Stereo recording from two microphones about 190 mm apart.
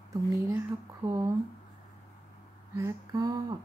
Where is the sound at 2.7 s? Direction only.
20° right (ahead or behind).